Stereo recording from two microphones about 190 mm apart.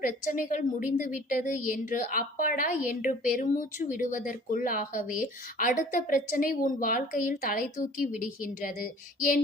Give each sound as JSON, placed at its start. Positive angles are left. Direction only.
{"t": 0.0, "sound": "speech", "side_deg": 45}